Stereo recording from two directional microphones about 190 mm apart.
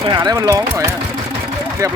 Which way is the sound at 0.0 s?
25° right (ahead or behind).